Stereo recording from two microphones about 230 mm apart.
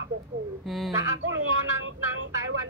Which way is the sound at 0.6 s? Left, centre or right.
Centre.